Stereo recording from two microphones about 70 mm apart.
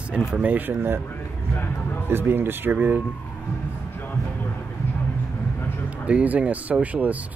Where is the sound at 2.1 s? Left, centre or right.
Right.